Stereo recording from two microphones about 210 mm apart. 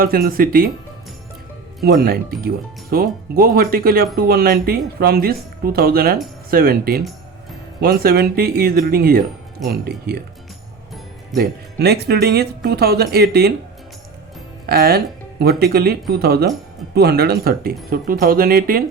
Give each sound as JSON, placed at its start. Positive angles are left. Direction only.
{"t": 0.0, "sound": "speech", "side_deg": -45}
{"t": 1.8, "sound": "speech", "side_deg": -45}
{"t": 11.3, "sound": "speech", "side_deg": -50}
{"t": 14.7, "sound": "speech", "side_deg": -50}